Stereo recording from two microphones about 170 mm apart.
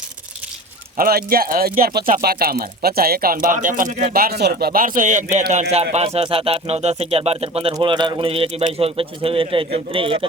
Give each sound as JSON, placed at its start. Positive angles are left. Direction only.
{"t": 0.9, "sound": "speech", "side_deg": -60}